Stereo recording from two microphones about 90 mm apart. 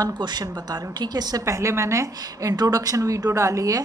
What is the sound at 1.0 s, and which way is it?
A woman's voice, 50° right (ahead or behind).